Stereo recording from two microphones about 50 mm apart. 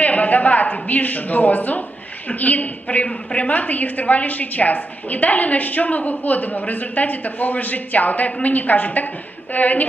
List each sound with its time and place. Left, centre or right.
0.0 s a woman's voice: left